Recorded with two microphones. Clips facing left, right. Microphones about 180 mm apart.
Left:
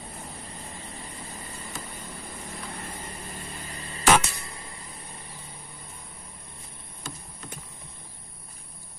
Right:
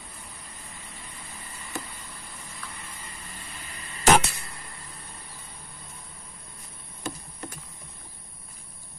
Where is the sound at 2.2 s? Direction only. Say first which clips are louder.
Left 5 dB; 50° left (ahead or behind).